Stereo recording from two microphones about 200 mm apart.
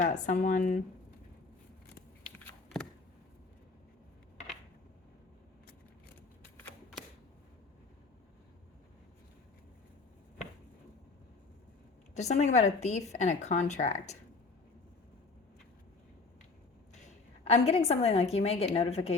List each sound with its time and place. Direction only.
0.0 s speech: 35° left (ahead or behind)
12.1 s speech: 35° left (ahead or behind)
16.9 s a woman's voice: 35° left (ahead or behind)